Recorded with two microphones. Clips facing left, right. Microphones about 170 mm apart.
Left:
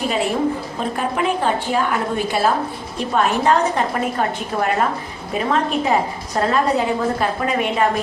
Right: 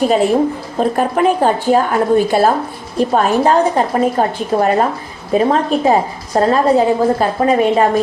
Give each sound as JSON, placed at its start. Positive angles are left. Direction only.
{"t": 0.8, "sound": "a woman's voice", "side_deg": -45}